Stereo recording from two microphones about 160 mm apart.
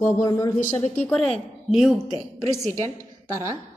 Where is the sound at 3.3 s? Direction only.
20° right (ahead or behind).